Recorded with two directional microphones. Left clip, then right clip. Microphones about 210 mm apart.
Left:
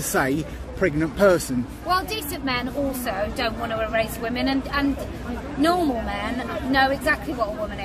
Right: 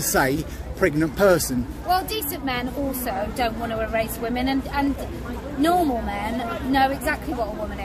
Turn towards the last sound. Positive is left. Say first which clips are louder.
# left 1 dB
turn(degrees=0)  # may be behind; listen again after turning